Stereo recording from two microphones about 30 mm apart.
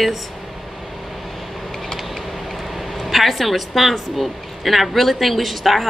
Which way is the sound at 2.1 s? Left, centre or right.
Centre.